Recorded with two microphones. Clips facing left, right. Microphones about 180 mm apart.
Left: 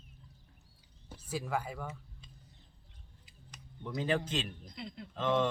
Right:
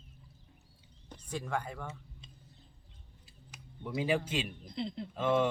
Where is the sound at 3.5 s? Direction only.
10° right (ahead or behind).